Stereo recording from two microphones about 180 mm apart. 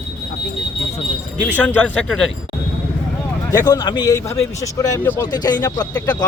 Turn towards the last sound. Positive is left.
turn(degrees=20)  # may be behind; listen again after turning